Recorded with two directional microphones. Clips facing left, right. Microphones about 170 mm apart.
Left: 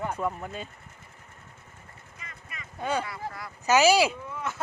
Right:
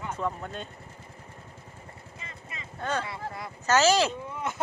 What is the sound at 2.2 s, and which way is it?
Clip-clop, 25° right (ahead or behind).